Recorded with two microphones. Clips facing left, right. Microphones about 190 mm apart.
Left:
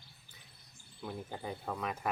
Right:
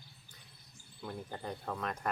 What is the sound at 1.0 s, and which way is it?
Speech, 5° left (ahead or behind).